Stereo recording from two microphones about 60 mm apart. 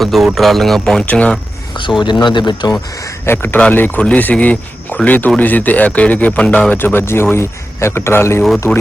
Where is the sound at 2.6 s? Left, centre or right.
Left.